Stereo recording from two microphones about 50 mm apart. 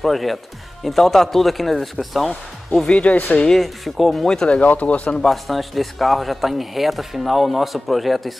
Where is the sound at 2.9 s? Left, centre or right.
Left.